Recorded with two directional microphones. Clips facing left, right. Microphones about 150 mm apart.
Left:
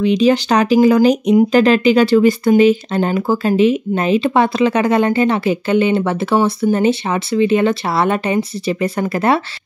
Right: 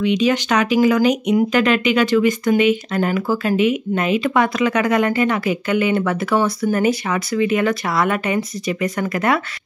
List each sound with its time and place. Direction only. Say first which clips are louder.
0.0 s speech: left 4 dB; 35° left (ahead or behind)